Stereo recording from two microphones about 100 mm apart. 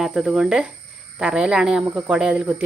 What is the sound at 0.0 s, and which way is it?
Speech, 10° right (ahead or behind).